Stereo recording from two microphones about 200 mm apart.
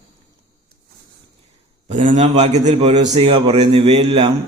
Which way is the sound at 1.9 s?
35° right (ahead or behind).